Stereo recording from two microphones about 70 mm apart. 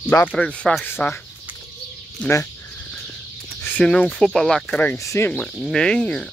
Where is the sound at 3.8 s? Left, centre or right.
Centre.